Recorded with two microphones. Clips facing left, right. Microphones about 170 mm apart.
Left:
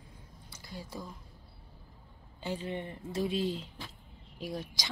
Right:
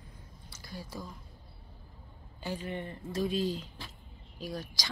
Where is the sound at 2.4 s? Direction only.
25° left (ahead or behind).